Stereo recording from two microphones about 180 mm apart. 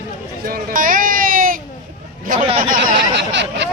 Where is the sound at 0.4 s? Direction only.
50° right (ahead or behind).